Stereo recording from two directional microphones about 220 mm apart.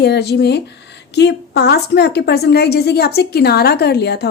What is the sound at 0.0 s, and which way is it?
A woman's voice, 50° left (ahead or behind).